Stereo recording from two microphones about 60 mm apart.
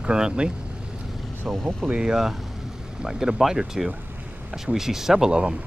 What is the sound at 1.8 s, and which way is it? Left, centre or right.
Speech, right.